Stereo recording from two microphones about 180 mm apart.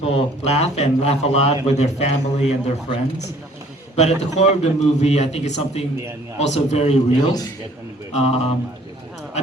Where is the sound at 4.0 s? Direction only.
40° left (ahead or behind).